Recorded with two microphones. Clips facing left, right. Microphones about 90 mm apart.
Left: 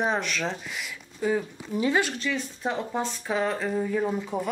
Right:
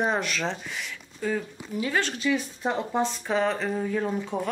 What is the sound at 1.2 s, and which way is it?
Speech, 20° left (ahead or behind).